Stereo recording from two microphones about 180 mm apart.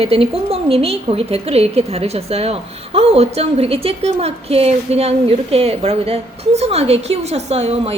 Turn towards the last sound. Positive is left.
turn(degrees=-35)  # may be behind; listen again after turning